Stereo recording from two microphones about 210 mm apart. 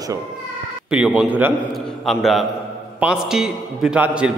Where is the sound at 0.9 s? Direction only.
5° right (ahead or behind).